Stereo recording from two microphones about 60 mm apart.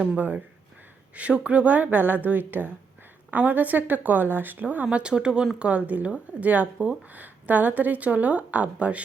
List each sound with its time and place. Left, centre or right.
1.1 s speech: right